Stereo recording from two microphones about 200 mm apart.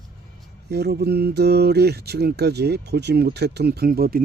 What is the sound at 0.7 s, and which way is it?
Speech, 55° right (ahead or behind).